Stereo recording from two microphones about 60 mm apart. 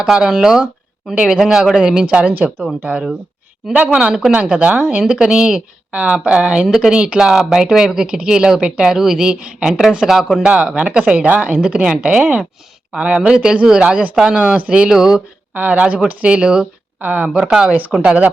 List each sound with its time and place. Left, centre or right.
0.0 s a woman's voice: centre; by 5.0 s right
5.0 s speech: centre
6.7 s speech: centre
6.9 s speech: centre
10.0 s speech: centre
10.4 s a woman's voice: centre
15.5 s a woman's voice: right
17.3 s a woman's voice: centre